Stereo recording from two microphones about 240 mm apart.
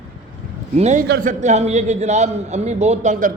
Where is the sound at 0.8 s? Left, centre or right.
Right.